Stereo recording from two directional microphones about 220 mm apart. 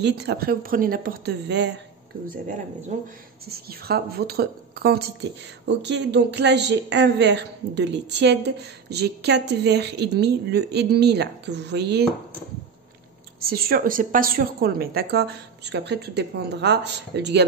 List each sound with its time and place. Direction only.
0.0 s a woman's voice: 50° right (ahead or behind)
2.2 s speech: 35° right (ahead or behind)
3.4 s a woman's voice: 45° right (ahead or behind)
13.4 s a woman's voice: 45° right (ahead or behind)